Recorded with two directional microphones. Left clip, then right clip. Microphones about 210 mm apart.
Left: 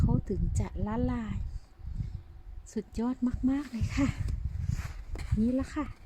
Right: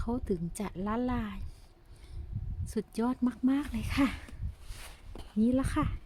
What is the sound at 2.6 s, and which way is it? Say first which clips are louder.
Speech: right 2 dB; 10° right (ahead or behind).